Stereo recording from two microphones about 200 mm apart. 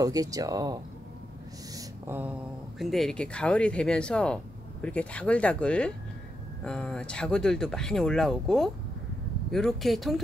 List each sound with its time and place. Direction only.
0.0 s speech: 15° right (ahead or behind)
1.7 s a sound: 15° right (ahead or behind)
2.8 s speech: centre (ahead or behind)